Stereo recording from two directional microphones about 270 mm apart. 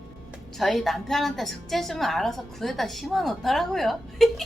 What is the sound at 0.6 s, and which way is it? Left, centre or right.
A woman's voice, centre.